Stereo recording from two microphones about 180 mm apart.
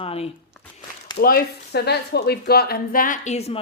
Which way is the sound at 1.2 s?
55° left (ahead or behind).